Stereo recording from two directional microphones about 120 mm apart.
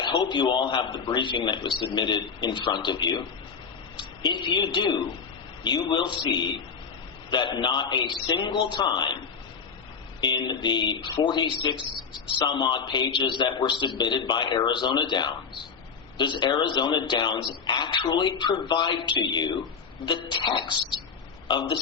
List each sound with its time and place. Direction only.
0.0 s a man's voice: 35° left (ahead or behind)
10.2 s a man's voice: 40° left (ahead or behind)